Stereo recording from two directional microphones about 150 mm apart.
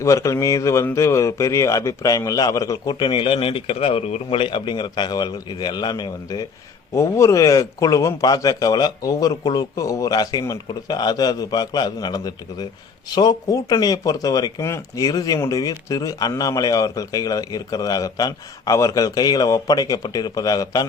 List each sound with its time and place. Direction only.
0.0 s speech: 20° left (ahead or behind)
2.9 s speech: 35° left (ahead or behind)